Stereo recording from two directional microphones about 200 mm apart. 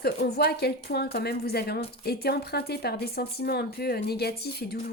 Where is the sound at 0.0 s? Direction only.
55° left (ahead or behind).